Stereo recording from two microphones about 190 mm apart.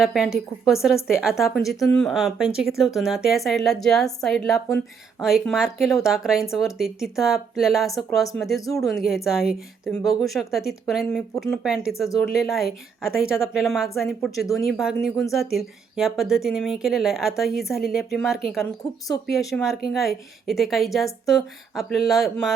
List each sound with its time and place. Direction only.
0.0 s speech: centre (ahead or behind)
18.6 s speech: 20° left (ahead or behind)
19.4 s speech: centre (ahead or behind)